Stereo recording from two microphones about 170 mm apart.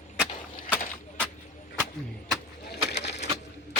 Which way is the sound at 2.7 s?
85° left.